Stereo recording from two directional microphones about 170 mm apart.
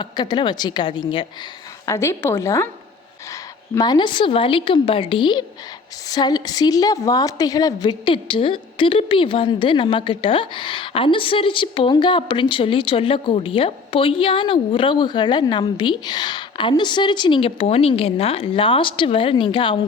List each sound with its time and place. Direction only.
0.0 s a woman's voice: 25° left (ahead or behind)
1.9 s a woman's voice: 15° left (ahead or behind)
3.8 s a woman's voice: 25° left (ahead or behind)